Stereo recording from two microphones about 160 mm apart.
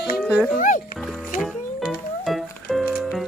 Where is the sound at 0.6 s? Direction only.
55° left (ahead or behind).